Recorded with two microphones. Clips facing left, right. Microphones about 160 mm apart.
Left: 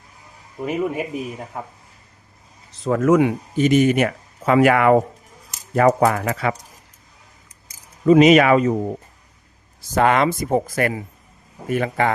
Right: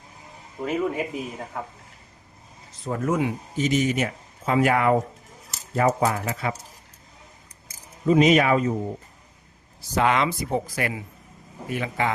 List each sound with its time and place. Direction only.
0.6 s speech: 15° left (ahead or behind)
2.8 s speech: 90° left; by 6.6 s 70° left (ahead or behind)
8.0 s speech: 75° left (ahead or behind)
9.9 s speech: 50° left (ahead or behind)